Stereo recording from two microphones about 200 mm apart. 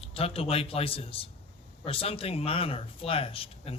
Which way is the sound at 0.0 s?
30° left (ahead or behind).